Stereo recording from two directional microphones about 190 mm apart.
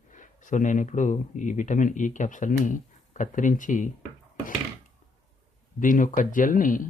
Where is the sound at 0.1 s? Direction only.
40° left (ahead or behind).